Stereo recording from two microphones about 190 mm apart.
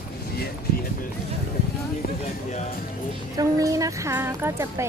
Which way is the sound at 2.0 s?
40° left (ahead or behind).